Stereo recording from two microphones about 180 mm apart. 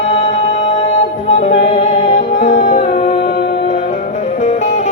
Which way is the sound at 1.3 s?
35° left (ahead or behind).